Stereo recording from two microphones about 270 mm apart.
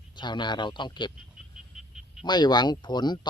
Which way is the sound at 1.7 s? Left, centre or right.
Centre.